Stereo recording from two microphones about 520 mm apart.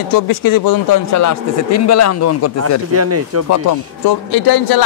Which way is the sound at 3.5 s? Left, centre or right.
Left.